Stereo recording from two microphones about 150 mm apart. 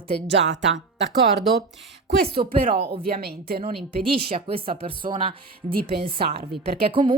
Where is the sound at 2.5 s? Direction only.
35° right (ahead or behind).